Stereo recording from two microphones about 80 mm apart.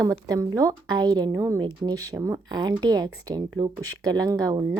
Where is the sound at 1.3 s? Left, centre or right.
Right.